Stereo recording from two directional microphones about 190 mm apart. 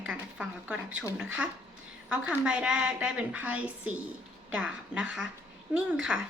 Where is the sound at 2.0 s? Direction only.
5° right (ahead or behind).